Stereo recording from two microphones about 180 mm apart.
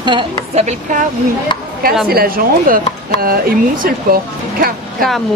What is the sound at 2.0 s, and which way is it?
Speech, 55° right (ahead or behind).